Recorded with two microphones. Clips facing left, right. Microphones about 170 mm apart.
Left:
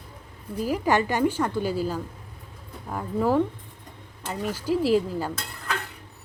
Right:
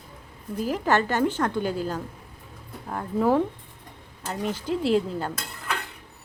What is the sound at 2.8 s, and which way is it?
Cutlery, centre (ahead or behind).